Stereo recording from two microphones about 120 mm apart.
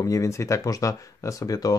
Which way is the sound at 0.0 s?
25° left (ahead or behind).